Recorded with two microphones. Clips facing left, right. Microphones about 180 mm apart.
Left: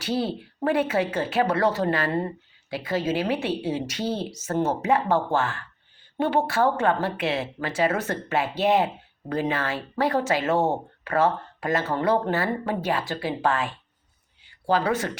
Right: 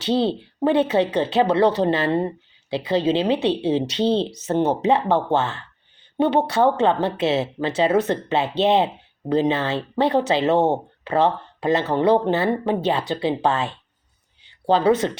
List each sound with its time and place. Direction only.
0.0 s speech: 25° right (ahead or behind)